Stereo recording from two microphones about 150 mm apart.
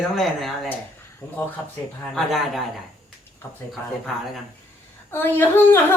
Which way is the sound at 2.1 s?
Centre (ahead or behind).